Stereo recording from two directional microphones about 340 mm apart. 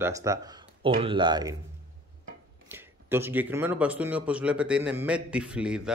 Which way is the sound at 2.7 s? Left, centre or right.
Centre.